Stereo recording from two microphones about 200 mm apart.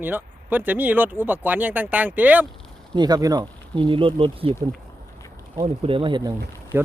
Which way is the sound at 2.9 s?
20° right (ahead or behind).